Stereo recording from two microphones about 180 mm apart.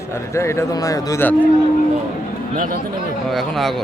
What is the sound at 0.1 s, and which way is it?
A man's voice, 15° left (ahead or behind).